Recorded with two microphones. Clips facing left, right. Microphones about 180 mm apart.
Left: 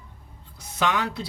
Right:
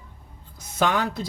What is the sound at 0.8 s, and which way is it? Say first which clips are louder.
Speech: right 2 dB; 45° right (ahead or behind).